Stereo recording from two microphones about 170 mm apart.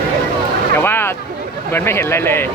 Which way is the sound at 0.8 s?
15° left (ahead or behind).